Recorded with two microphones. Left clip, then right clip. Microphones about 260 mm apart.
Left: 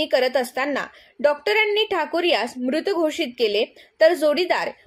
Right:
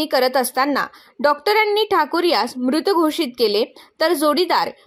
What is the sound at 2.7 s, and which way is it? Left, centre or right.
A woman's voice, right.